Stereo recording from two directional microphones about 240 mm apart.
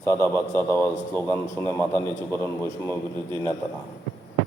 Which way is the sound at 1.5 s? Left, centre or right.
Centre.